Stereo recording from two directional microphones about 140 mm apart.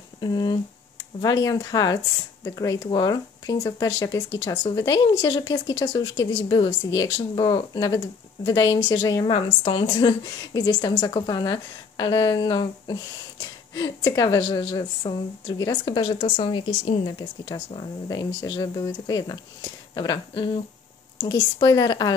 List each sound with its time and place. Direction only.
0.2 s speech: 30° left (ahead or behind)